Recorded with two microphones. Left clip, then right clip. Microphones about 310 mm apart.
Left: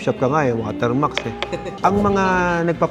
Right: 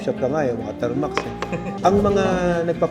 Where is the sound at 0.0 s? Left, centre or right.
Left.